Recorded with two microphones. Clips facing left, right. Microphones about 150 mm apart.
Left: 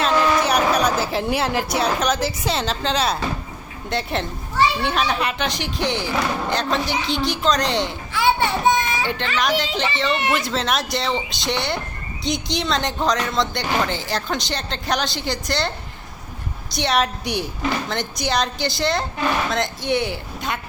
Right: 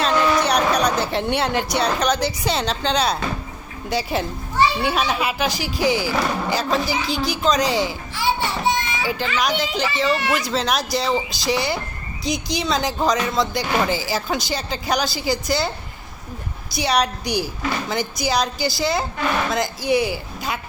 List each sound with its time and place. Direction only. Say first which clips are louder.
0.0 s a sound: even; centre (ahead or behind)
1.7 s speech: even; 5° left (ahead or behind)
8.1 s music: left 6 dB; 55° left (ahead or behind)
9.0 s speech: even; 5° right (ahead or behind)
16.7 s speech: even; centre (ahead or behind)